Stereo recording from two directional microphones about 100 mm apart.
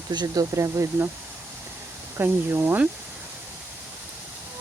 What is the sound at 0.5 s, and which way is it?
Speech, 30° right (ahead or behind).